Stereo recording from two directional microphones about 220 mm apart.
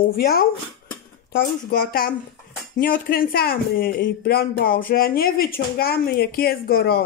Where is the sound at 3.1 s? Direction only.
45° left (ahead or behind).